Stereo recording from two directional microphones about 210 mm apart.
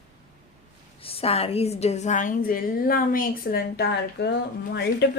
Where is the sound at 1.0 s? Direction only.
25° left (ahead or behind); by 5.1 s 50° left (ahead or behind).